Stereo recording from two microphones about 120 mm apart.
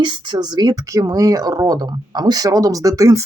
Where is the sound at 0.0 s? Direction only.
40° right (ahead or behind).